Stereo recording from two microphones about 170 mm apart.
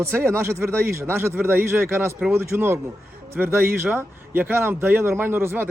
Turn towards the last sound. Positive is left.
turn(degrees=-15)  # may be behind; listen again after turning